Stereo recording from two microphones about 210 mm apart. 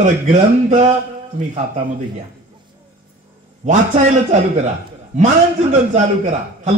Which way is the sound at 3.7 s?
35° right (ahead or behind).